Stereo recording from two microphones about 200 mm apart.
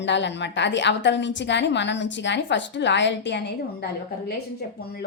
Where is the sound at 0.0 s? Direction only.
60° left (ahead or behind).